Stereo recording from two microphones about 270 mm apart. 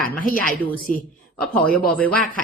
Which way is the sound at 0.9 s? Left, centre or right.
Left.